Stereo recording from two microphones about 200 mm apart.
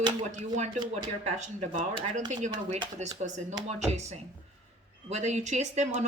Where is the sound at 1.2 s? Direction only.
35° right (ahead or behind).